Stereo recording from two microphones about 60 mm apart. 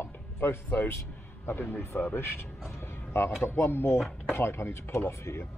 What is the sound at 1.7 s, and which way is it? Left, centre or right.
Speech, left.